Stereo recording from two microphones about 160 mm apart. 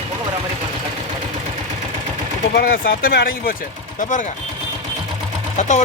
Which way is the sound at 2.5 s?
80° left.